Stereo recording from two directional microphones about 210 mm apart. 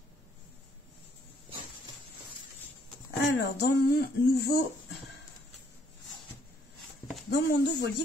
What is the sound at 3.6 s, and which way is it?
A woman's voice, 55° left (ahead or behind).